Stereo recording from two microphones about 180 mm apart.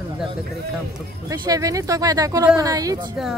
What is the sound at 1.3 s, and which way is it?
Speech, 20° right (ahead or behind).